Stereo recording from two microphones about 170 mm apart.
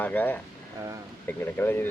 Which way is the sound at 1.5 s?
10° left (ahead or behind).